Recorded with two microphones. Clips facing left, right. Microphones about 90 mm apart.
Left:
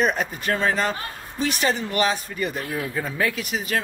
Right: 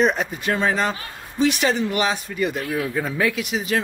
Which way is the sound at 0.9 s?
40° left (ahead or behind).